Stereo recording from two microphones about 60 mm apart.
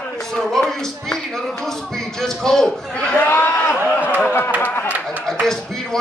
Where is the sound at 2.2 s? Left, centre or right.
Centre.